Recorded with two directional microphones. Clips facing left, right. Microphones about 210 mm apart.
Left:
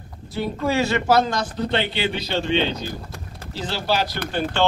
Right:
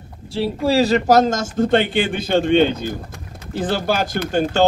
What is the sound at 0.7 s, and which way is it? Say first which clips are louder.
Speech: right 5 dB; 35° right (ahead or behind).